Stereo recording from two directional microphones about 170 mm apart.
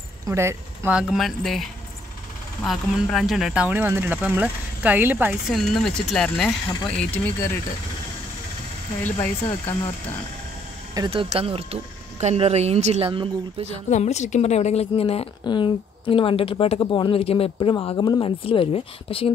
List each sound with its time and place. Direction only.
0.3 s speech: 15° right (ahead or behind)
1.1 s speech: centre (ahead or behind)
5.5 s speech: centre (ahead or behind)
9.0 s speech: 10° left (ahead or behind)
11.1 s speech: 35° right (ahead or behind)
13.8 s a woman's voice: 45° left (ahead or behind)